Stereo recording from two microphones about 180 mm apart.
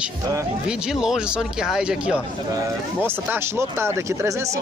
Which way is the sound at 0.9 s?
5° right (ahead or behind).